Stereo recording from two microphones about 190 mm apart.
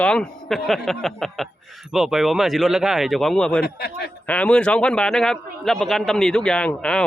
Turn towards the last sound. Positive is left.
turn(degrees=5)  # may be behind; listen again after turning